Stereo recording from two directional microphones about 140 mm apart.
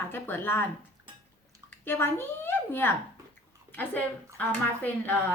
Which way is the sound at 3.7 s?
10° left (ahead or behind).